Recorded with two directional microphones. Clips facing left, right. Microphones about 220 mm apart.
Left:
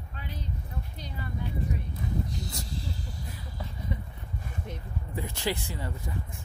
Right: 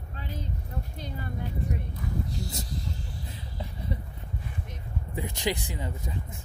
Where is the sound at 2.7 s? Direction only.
35° left (ahead or behind).